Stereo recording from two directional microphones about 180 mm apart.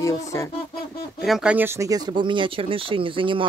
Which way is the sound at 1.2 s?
5° right (ahead or behind).